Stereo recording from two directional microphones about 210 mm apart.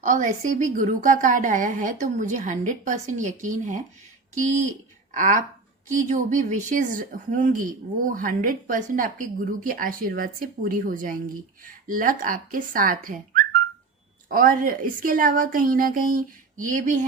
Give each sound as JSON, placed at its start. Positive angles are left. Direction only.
{"t": 0.0, "sound": "speech", "side_deg": -35}
{"t": 5.1, "sound": "speech", "side_deg": -35}